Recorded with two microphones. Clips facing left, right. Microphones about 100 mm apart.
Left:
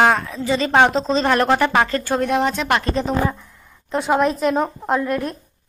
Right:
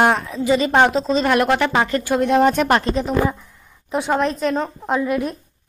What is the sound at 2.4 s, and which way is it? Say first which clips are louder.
Speech: right 5 dB; 55° right (ahead or behind).